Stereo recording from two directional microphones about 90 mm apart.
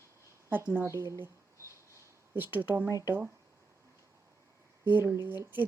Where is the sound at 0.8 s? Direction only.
30° right (ahead or behind).